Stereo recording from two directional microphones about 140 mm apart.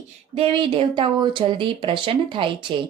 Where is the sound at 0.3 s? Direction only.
40° right (ahead or behind).